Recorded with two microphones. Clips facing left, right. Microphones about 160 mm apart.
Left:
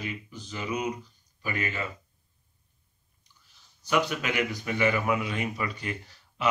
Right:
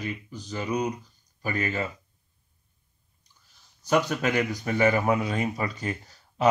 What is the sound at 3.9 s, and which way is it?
Speech, 40° right (ahead or behind).